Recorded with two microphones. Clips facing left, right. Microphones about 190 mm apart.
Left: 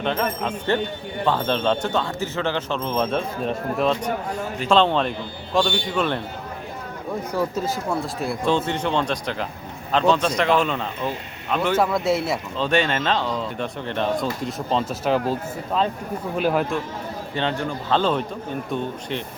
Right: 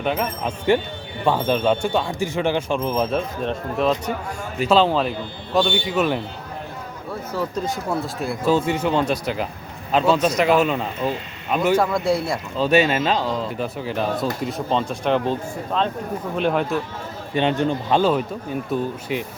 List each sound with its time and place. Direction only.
0.0 s speech: 10° right (ahead or behind)
7.1 s speech: 15° left (ahead or behind)
7.6 s speech: centre (ahead or behind)
11.8 s speech: centre (ahead or behind)
17.3 s speech: 20° right (ahead or behind)